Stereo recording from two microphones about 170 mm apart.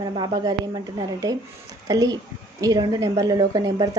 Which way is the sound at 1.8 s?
20° right (ahead or behind).